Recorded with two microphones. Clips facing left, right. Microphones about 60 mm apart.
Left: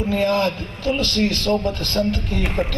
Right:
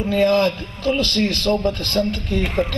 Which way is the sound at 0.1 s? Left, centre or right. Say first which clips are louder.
Right 4 dB; right.